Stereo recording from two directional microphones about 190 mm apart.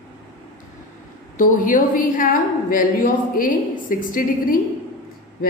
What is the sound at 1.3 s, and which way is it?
A woman's voice, 45° left (ahead or behind).